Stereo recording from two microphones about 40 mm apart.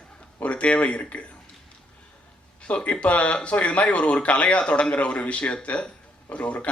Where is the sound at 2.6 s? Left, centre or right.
Left.